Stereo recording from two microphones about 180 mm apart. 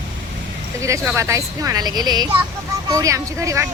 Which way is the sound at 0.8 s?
15° right (ahead or behind).